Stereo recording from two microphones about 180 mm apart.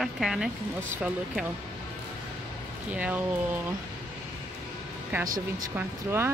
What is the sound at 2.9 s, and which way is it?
Speech, 5° right (ahead or behind).